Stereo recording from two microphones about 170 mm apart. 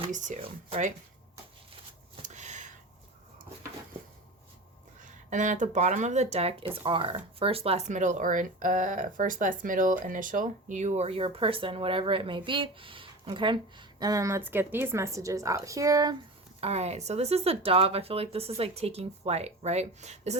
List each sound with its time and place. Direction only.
0.1 s speech: 45° right (ahead or behind)
2.2 s a sound: 45° right (ahead or behind)
5.0 s speech: 45° right (ahead or behind); by 16.1 s 20° right (ahead or behind)
16.6 s speech: 40° right (ahead or behind)